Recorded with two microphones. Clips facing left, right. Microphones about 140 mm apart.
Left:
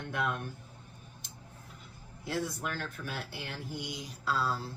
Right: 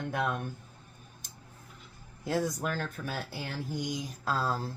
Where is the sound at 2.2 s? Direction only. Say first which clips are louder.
Right 4 dB; 45° right (ahead or behind).